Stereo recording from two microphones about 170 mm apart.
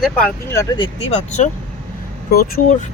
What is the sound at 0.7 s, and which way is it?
Speech, 30° left (ahead or behind).